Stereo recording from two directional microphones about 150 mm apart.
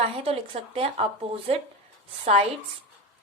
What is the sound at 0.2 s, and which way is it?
Speech, 40° right (ahead or behind).